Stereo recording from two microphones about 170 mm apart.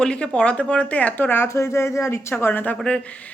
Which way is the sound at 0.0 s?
5° left (ahead or behind).